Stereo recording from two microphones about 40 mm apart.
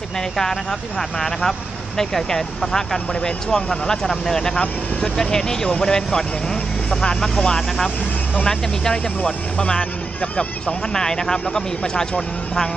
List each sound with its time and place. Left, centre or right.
0.4 s speech: centre
10.9 s speech: centre